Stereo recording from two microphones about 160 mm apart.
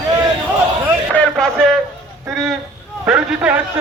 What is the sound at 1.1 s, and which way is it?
Speech, 5° left (ahead or behind).